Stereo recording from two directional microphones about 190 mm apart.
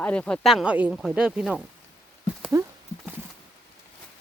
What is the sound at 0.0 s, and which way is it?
Speech, 5° left (ahead or behind).